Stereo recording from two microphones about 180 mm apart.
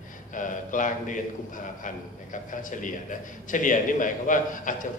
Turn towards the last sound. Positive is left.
turn(degrees=45)  # may be behind; listen again after turning